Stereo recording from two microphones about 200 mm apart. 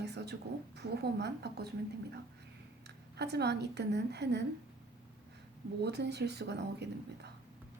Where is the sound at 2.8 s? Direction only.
55° right (ahead or behind).